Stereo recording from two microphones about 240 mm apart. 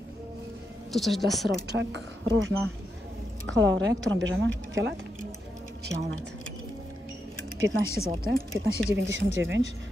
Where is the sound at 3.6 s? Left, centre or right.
Right.